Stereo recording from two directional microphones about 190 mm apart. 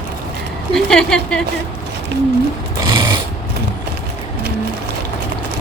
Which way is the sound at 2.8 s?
20° right (ahead or behind).